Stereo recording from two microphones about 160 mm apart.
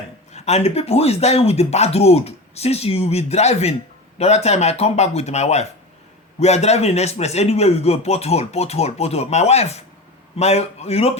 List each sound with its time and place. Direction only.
0.3 s speech: 40° left (ahead or behind)